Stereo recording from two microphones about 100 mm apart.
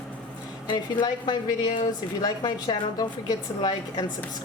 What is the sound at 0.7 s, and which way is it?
A woman's voice, 45° left (ahead or behind).